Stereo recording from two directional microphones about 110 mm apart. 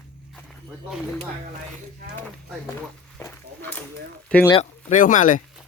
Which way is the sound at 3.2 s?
20° left (ahead or behind).